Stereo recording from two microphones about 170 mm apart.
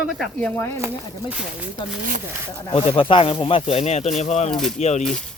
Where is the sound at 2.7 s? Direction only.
30° left (ahead or behind).